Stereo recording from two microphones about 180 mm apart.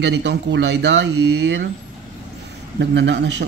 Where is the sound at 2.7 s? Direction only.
75° right (ahead or behind).